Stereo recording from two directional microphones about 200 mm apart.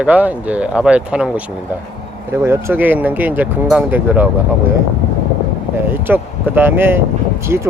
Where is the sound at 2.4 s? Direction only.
10° right (ahead or behind).